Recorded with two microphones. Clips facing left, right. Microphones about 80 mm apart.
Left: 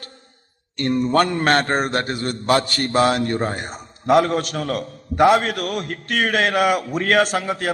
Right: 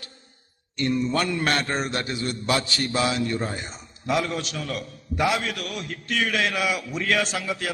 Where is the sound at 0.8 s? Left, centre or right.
Left.